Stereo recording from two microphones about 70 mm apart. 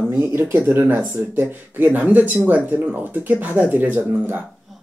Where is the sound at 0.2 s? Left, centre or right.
Right.